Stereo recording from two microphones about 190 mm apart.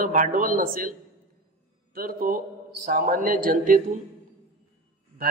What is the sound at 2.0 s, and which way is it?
A man's voice, 50° right (ahead or behind).